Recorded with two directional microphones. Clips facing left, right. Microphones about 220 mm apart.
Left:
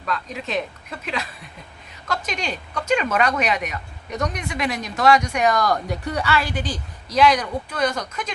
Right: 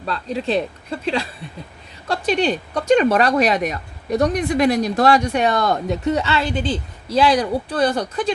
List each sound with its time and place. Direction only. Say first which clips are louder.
0.0 s speech: right 5 dB; 30° right (ahead or behind)